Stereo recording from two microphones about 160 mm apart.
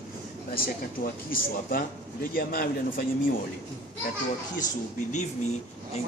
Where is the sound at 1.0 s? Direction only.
65° left (ahead or behind).